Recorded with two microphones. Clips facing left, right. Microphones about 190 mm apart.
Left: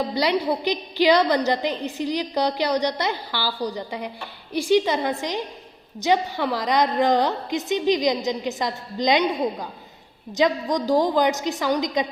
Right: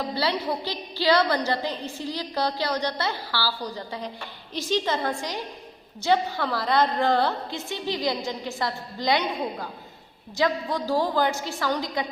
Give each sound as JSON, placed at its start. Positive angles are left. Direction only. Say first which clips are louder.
{"t": 0.1, "sound": "a woman's voice", "louder": "left 4 dB", "side_deg": 15}